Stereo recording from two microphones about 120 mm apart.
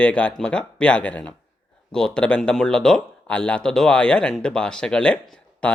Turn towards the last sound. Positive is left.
turn(degrees=10)  # may be behind; listen again after turning